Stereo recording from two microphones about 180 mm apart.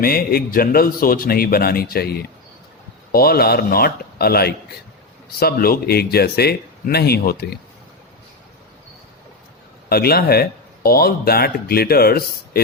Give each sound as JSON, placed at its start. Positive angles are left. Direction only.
{"t": 0.0, "sound": "a man's voice", "side_deg": 55}
{"t": 9.9, "sound": "a man's voice", "side_deg": 60}